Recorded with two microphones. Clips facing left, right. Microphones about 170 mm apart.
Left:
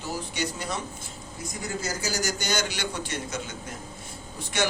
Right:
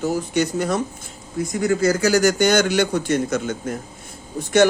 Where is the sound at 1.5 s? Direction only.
70° right (ahead or behind); by 3.5 s 50° right (ahead or behind).